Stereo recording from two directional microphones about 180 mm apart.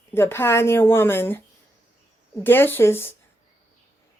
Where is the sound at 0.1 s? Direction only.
15° left (ahead or behind).